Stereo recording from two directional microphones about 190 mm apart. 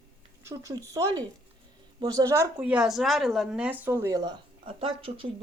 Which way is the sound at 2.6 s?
5° right (ahead or behind).